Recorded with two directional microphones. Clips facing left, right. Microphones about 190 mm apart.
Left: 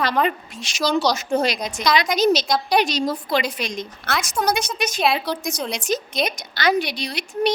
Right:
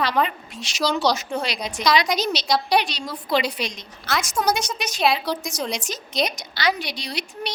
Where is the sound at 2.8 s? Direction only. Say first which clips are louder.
Left 8 dB; 45° left (ahead or behind).